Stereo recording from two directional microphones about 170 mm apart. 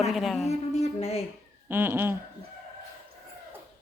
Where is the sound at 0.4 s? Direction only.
40° left (ahead or behind).